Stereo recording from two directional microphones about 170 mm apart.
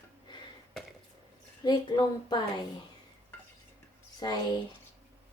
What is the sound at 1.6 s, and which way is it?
Speech, 25° left (ahead or behind).